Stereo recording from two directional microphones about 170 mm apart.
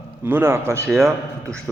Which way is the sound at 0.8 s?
Centre (ahead or behind).